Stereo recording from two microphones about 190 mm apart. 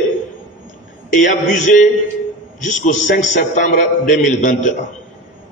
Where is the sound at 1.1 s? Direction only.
40° left (ahead or behind).